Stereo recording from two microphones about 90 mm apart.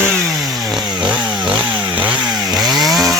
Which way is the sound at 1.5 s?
65° right (ahead or behind).